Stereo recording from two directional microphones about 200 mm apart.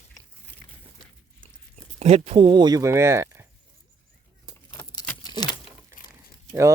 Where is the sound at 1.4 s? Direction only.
30° right (ahead or behind); by 3.4 s 15° right (ahead or behind).